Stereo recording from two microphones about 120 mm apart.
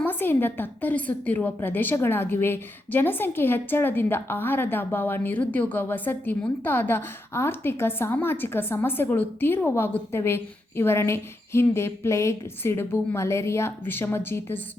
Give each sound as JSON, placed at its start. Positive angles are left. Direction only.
{"t": 0.0, "sound": "a woman's voice", "side_deg": 15}